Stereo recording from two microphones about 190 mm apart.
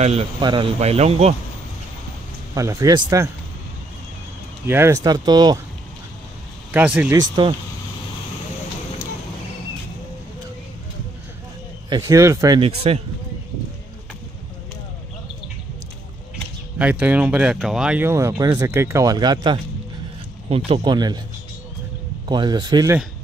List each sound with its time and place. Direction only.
0.0 s speech: 30° right (ahead or behind)
2.5 s speech: 15° right (ahead or behind)
4.6 s speech: 15° right (ahead or behind)
6.7 s speech: 10° right (ahead or behind)
7.2 s speech: 25° right (ahead or behind)
11.9 s speech: 15° right (ahead or behind)
16.7 s speech: 10° right (ahead or behind)
22.3 s speech: 25° right (ahead or behind)